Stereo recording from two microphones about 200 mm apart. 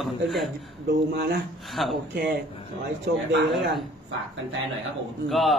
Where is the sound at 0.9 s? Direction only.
55° right (ahead or behind).